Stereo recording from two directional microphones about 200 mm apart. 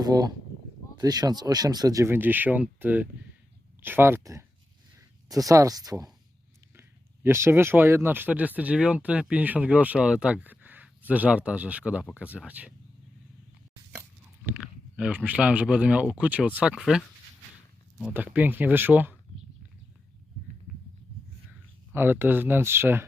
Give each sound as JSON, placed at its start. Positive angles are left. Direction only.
{"t": 0.0, "sound": "speech", "side_deg": -20}
{"t": 14.9, "sound": "speech", "side_deg": -5}
{"t": 18.0, "sound": "speech", "side_deg": -10}
{"t": 21.9, "sound": "speech", "side_deg": -10}